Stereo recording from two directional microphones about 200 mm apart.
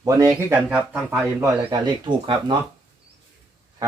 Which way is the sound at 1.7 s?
25° right (ahead or behind).